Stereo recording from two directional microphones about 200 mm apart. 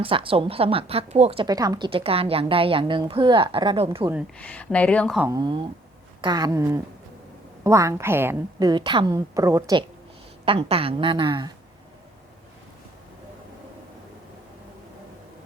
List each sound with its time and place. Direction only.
0.0 s a woman's voice: 25° right (ahead or behind)
4.4 s speech: 5° left (ahead or behind)
5.2 s a woman's voice: 20° right (ahead or behind)
10.4 s a woman's voice: 25° right (ahead or behind)